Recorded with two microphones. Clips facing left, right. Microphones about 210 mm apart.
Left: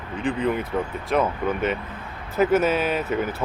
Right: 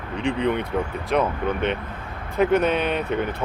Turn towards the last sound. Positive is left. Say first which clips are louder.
# even
turn(degrees=5)  # may be behind; listen again after turning